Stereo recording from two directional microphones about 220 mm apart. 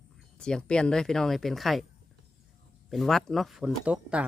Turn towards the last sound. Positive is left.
turn(degrees=-5)  # may be behind; listen again after turning